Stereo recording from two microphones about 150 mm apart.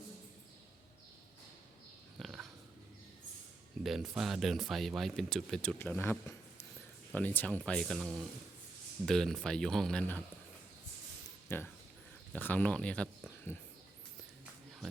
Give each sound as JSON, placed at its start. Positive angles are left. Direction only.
{"t": 2.1, "sound": "dog", "side_deg": 0}
{"t": 3.8, "sound": "speech", "side_deg": 0}
{"t": 11.4, "sound": "speech", "side_deg": 15}